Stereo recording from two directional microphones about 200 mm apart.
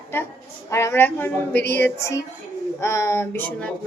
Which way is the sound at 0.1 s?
10° left (ahead or behind).